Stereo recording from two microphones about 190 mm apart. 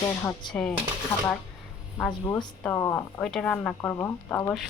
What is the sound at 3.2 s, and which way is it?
Speech, 5° left (ahead or behind).